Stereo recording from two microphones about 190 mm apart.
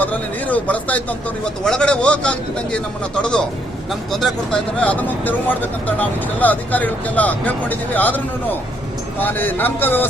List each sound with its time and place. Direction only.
0.0 s a man's voice: 10° left (ahead or behind)